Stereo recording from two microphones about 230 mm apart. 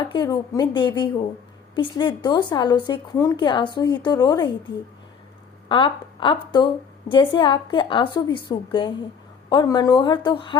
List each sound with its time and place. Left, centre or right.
0.0 s speech: centre
5.6 s speech: left